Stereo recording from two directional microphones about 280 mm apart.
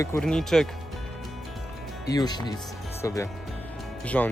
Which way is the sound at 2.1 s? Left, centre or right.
Centre.